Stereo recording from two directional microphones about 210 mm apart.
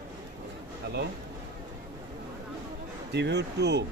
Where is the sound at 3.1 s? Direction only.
55° right (ahead or behind).